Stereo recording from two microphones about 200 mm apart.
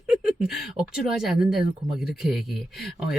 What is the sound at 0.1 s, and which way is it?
Speech, 5° right (ahead or behind).